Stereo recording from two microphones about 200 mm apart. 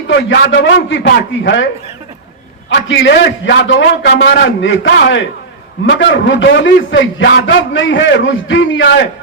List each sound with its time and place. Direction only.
0.1 s a man's voice: 65° left (ahead or behind)
2.6 s a man's voice: 65° left (ahead or behind)